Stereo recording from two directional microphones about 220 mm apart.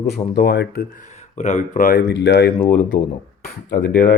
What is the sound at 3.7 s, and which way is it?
Speech, 40° left (ahead or behind).